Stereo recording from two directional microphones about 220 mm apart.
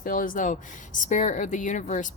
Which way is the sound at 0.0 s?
40° left (ahead or behind).